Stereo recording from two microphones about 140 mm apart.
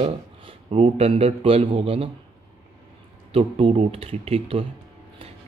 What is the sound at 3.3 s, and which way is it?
Speech, 45° right (ahead or behind).